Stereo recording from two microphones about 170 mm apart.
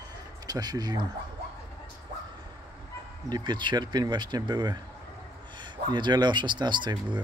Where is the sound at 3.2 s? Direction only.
25° right (ahead or behind).